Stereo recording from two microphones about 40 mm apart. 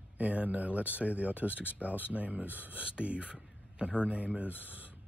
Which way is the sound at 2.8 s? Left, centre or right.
Right.